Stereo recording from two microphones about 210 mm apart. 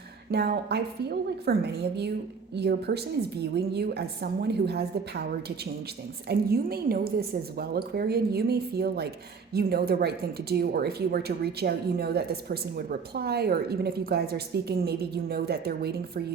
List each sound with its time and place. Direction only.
0.3 s speech: 50° right (ahead or behind)
6.2 s speech: 45° right (ahead or behind)